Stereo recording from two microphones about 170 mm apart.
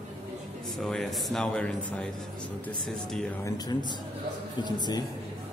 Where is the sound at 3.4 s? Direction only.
25° left (ahead or behind).